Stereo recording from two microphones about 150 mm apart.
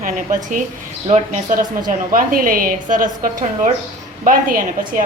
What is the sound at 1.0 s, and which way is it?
A woman's voice, 50° right (ahead or behind).